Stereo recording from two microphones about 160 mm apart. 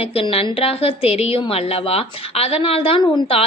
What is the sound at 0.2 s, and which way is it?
A woman's voice, 35° left (ahead or behind).